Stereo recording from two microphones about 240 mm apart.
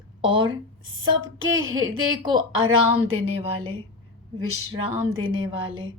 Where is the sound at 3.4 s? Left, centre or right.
Right.